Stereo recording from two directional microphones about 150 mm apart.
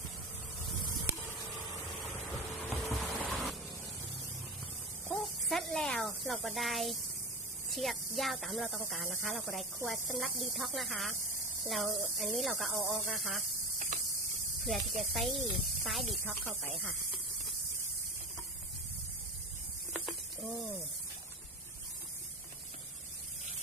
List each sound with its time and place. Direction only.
2.1 s vehicle: centre (ahead or behind)
5.2 s snake: centre (ahead or behind)
7.7 s speech: centre (ahead or behind)
13.9 s cricket: 55° right (ahead or behind)
14.6 s speech: centre (ahead or behind)
19.9 s a sound: centre (ahead or behind)